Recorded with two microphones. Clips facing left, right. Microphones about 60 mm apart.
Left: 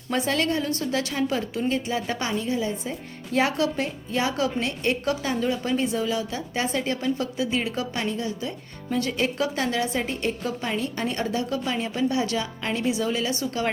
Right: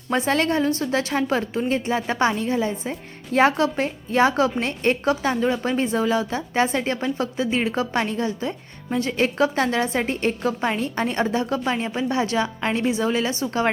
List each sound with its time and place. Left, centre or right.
0.1 s a woman's voice: right